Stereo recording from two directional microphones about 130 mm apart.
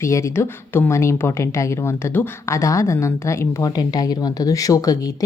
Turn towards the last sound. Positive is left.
turn(degrees=25)  # may be behind; listen again after turning